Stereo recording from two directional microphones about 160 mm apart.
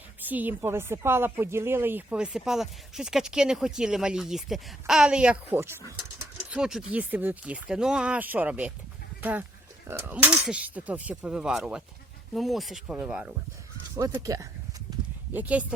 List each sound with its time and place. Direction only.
0.2 s speech: 10° right (ahead or behind)
9.9 s speech: 15° right (ahead or behind)
13.9 s speech: 20° right (ahead or behind)
15.3 s speech: 10° right (ahead or behind)